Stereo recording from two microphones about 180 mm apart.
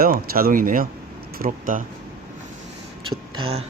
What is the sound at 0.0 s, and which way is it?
Speech, 55° right (ahead or behind).